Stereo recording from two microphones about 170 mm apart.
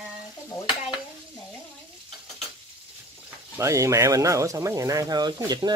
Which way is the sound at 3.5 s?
20° right (ahead or behind).